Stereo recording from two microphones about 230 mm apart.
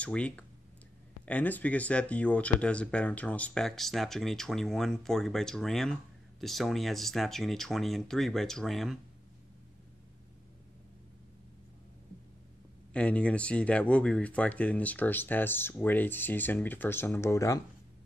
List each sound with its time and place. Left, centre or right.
0.0 s speech: centre
12.9 s speech: centre